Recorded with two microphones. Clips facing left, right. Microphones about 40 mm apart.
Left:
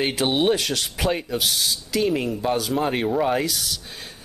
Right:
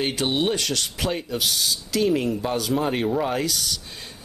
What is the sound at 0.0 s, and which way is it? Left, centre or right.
Speech, centre.